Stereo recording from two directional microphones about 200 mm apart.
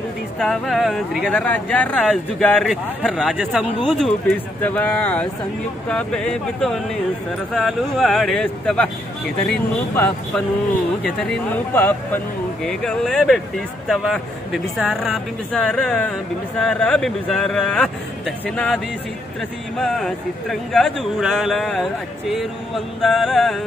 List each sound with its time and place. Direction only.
0.4 s speech: centre (ahead or behind)
9.9 s speech: 10° left (ahead or behind)
19.8 s speech: centre (ahead or behind)
23.0 s speech: centre (ahead or behind)